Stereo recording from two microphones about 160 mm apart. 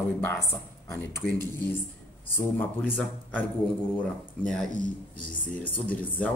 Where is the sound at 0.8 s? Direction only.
10° left (ahead or behind).